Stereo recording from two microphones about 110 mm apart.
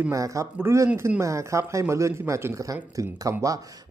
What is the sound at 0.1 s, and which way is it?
Speech, 30° right (ahead or behind).